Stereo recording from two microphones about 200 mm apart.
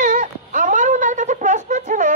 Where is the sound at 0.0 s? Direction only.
40° right (ahead or behind).